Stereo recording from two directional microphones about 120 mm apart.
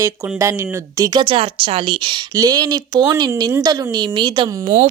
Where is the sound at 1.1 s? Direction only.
45° right (ahead or behind).